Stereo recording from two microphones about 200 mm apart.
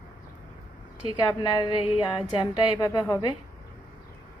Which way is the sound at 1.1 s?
20° left (ahead or behind).